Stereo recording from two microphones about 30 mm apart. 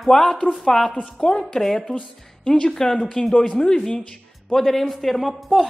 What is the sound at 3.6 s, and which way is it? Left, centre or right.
Speech, left.